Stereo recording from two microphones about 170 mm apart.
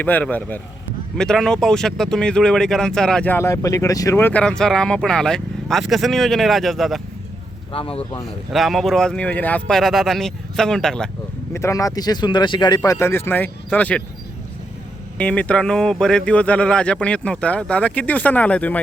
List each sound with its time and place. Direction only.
0.0 s speech: 10° left (ahead or behind)
7.7 s speech: 35° left (ahead or behind)
8.5 s speech: centre (ahead or behind)
11.5 s speech: 20° left (ahead or behind)
15.2 s speech: 5° left (ahead or behind)